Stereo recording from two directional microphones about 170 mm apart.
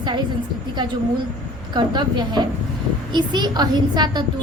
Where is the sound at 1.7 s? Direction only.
25° right (ahead or behind).